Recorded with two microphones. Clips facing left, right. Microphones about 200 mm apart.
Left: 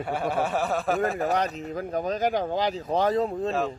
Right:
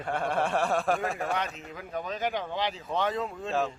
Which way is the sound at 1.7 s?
40° left (ahead or behind).